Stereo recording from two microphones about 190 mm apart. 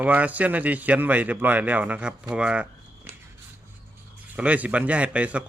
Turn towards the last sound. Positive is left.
turn(degrees=-5)  # may be behind; listen again after turning